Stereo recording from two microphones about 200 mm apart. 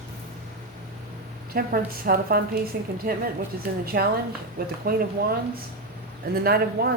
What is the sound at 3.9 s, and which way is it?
Speech, 50° right (ahead or behind).